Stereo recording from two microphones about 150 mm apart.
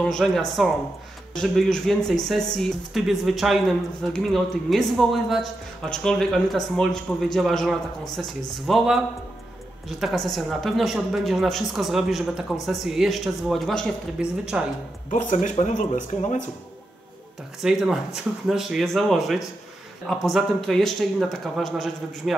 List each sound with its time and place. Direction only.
0.1 s speech: 5° left (ahead or behind)
15.0 s speech: 55° left (ahead or behind)
17.6 s speech: 5° right (ahead or behind)